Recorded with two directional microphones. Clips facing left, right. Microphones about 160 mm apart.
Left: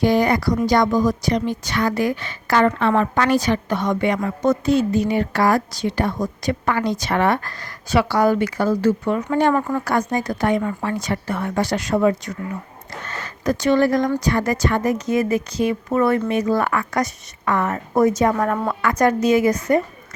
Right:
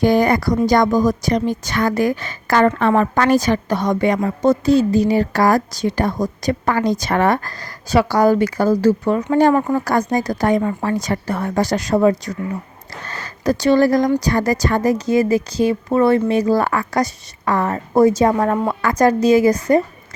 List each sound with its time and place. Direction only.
0.0 s a woman's voice: 45° right (ahead or behind)